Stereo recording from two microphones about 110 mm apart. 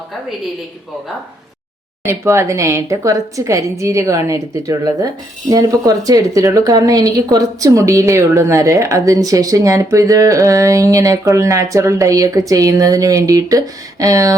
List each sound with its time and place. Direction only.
2.0 s a woman's voice: 25° right (ahead or behind)